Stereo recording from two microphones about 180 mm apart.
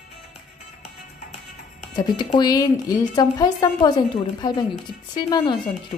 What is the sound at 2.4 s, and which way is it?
A woman's voice, 20° left (ahead or behind).